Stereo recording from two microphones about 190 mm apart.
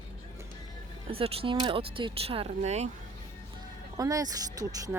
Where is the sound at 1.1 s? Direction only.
30° right (ahead or behind).